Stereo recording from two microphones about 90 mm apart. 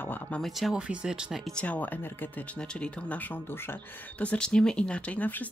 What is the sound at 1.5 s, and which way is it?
Speech, 15° left (ahead or behind).